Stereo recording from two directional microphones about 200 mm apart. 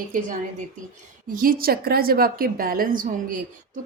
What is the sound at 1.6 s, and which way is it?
A woman's voice, 50° right (ahead or behind).